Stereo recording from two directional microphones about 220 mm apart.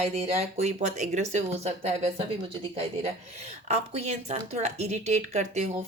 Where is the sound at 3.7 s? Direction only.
30° right (ahead or behind).